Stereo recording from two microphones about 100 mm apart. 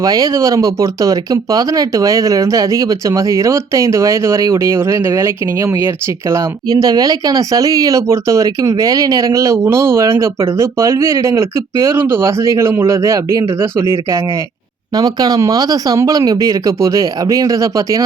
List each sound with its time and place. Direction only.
0.0 s speech: 35° right (ahead or behind)
14.9 s speech: 40° right (ahead or behind)